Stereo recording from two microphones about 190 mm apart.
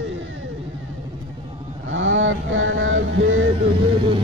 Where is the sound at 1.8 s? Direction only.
90° right.